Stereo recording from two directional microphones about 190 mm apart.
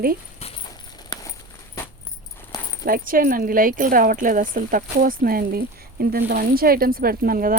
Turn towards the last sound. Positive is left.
turn(degrees=-50)  # may be behind; listen again after turning